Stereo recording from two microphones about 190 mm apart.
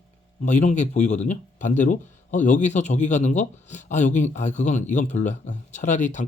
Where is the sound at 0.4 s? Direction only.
40° left (ahead or behind).